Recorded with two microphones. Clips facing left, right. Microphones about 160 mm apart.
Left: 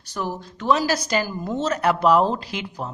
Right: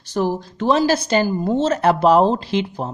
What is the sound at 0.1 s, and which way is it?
Speech, 30° right (ahead or behind).